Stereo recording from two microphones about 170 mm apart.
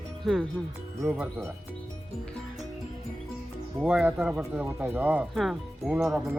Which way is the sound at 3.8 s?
5° right (ahead or behind).